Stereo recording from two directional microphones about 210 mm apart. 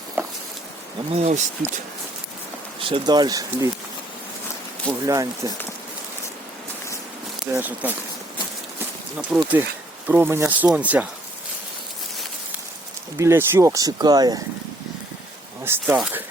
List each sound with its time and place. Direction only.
0.2 s a sound: 10° right (ahead or behind)
1.1 s speech: 35° right (ahead or behind)
2.8 s speech: 20° right (ahead or behind)
4.9 s speech: 20° right (ahead or behind)
7.4 s speech: 10° right (ahead or behind)
9.1 s speech: 5° right (ahead or behind)
13.1 s speech: 10° right (ahead or behind)
15.6 s speech: 10° right (ahead or behind)